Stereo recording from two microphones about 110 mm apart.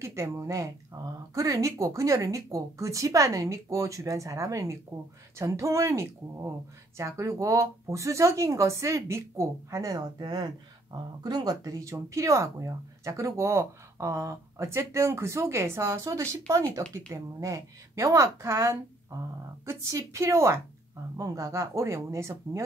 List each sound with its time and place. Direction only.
0.0 s speech: 25° right (ahead or behind)